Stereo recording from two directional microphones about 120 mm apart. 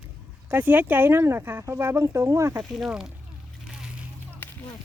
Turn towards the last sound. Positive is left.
turn(degrees=15)  # may be behind; listen again after turning